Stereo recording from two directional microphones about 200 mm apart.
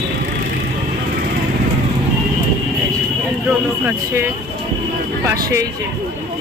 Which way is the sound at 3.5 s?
10° right (ahead or behind).